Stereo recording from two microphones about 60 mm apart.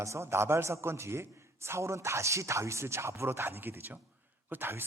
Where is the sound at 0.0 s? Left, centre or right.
Right.